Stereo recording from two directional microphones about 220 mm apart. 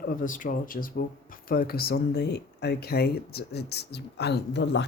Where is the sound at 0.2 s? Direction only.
40° left (ahead or behind).